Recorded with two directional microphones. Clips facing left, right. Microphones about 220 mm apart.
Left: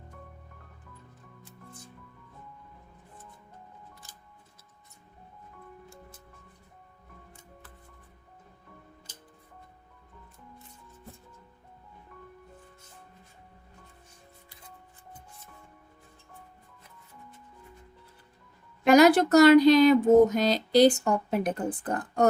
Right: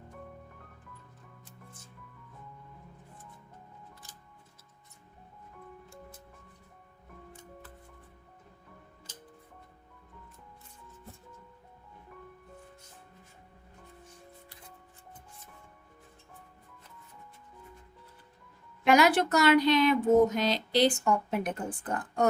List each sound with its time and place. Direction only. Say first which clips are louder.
18.9 s speech: left 5 dB; 40° left (ahead or behind)